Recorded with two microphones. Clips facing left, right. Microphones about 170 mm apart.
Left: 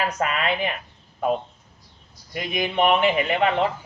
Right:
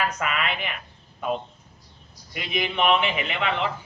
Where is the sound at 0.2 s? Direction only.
40° left (ahead or behind).